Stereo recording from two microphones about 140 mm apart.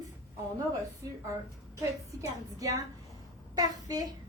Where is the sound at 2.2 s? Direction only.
25° right (ahead or behind).